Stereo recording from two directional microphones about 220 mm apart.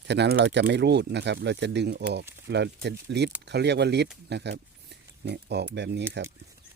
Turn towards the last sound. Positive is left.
turn(degrees=-50)  # may be behind; listen again after turning